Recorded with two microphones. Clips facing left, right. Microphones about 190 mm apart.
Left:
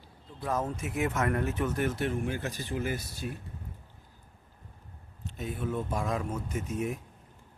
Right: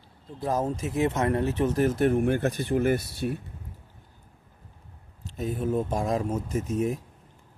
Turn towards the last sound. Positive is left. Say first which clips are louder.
# right 6 dB
turn(degrees=-35)  # may be behind; listen again after turning